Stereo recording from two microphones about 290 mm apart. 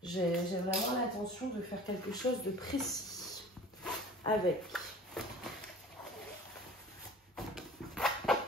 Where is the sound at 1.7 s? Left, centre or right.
Centre.